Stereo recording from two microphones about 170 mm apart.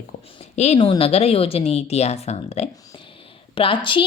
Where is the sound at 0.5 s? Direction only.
40° left (ahead or behind).